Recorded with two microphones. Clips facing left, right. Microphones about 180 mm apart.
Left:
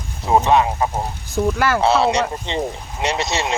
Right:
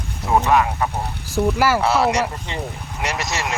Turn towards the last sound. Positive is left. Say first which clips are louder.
# left 4 dB
turn(degrees=25)  # may be behind; listen again after turning